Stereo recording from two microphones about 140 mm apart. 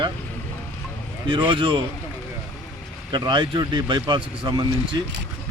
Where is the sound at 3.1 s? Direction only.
35° right (ahead or behind).